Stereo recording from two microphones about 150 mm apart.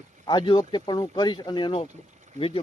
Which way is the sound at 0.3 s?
30° left (ahead or behind).